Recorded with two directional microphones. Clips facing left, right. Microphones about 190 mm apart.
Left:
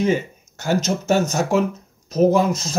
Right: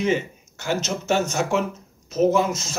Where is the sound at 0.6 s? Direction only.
40° left (ahead or behind).